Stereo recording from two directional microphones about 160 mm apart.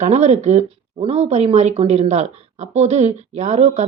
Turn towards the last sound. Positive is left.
turn(degrees=-45)  # may be behind; listen again after turning